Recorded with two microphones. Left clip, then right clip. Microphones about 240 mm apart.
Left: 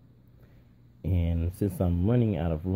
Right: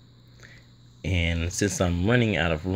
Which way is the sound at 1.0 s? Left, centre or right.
Centre.